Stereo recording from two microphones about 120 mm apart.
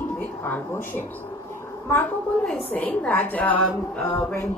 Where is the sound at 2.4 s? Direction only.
10° left (ahead or behind).